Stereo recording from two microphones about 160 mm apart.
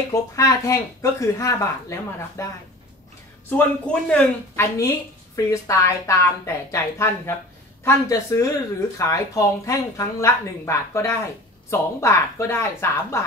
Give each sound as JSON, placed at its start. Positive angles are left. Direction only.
{"t": 0.1, "sound": "speech", "side_deg": 20}
{"t": 4.6, "sound": "speech", "side_deg": 20}